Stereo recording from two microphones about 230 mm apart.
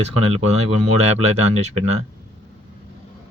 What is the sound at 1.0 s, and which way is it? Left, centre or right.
Speech, right.